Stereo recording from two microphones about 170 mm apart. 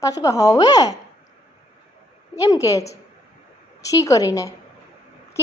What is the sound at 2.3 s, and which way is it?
Speech, 20° left (ahead or behind).